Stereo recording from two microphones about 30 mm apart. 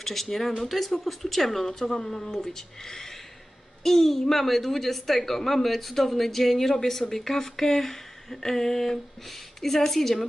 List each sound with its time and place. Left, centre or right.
0.0 s speech: centre